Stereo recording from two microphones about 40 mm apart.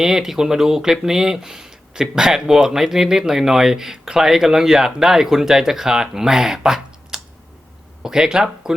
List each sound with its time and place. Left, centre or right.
0.0 s speech: centre